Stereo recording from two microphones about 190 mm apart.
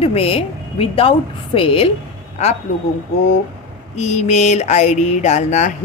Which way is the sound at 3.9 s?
35° left (ahead or behind).